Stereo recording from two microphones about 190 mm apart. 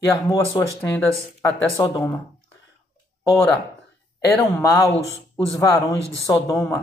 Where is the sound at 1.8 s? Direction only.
20° left (ahead or behind).